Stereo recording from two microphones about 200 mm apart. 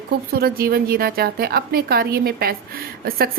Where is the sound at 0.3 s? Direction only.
50° right (ahead or behind).